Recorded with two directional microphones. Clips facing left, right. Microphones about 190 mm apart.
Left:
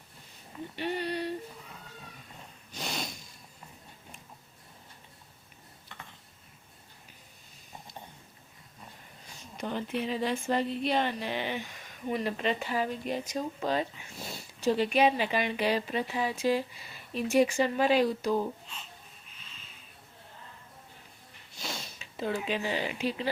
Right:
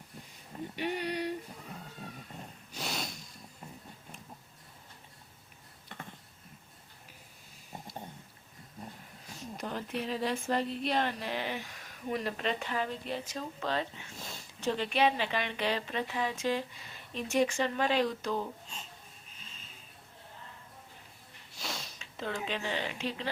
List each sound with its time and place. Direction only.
0.8 s a sound: 10° right (ahead or behind)
2.7 s snort: centre (ahead or behind)
9.2 s speech: centre (ahead or behind)
21.5 s speech: centre (ahead or behind)